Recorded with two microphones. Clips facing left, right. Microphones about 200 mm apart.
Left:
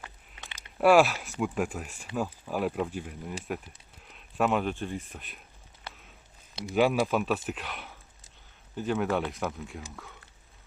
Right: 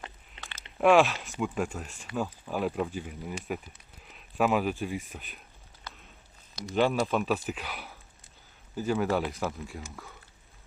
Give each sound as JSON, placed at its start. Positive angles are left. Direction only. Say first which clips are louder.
{"t": 0.8, "sound": "speech", "louder": "left 1 dB", "side_deg": 5}
{"t": 5.9, "sound": "a sound", "louder": "left 2 dB", "side_deg": 30}
{"t": 6.7, "sound": "speech", "louder": "left 1 dB", "side_deg": 5}